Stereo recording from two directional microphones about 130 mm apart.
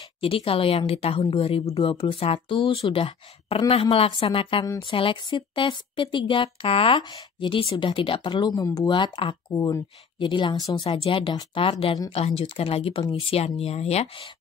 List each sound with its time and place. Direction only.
0.2 s a woman's voice: 45° left (ahead or behind)
11.1 s a woman's voice: 40° left (ahead or behind)